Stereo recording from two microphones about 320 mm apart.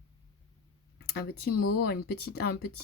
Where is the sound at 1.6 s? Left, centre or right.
Left.